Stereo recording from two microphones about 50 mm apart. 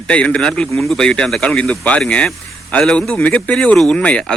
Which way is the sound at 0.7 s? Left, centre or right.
Centre.